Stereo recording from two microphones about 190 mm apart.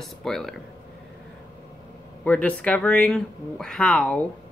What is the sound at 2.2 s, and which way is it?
Speech, 5° left (ahead or behind).